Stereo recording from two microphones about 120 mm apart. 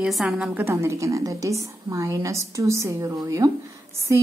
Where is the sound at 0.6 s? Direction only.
20° right (ahead or behind).